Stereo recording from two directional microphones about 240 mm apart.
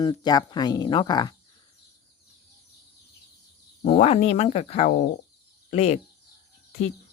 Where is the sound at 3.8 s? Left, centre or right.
Left.